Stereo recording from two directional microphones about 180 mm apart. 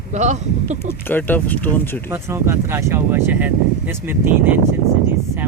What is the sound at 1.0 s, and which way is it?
Speech, 10° left (ahead or behind).